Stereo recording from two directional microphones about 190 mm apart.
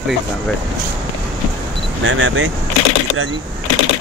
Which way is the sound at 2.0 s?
85° right.